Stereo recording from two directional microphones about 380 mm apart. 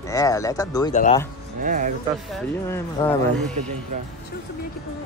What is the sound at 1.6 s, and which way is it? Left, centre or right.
Speech, centre.